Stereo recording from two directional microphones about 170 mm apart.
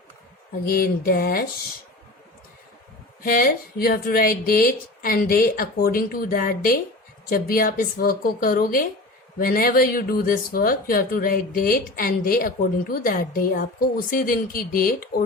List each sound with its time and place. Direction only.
0.6 s speech: 60° left (ahead or behind)
3.2 s speech: 60° left (ahead or behind)